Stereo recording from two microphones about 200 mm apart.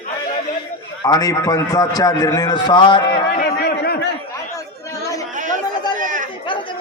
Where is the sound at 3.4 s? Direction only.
55° left (ahead or behind).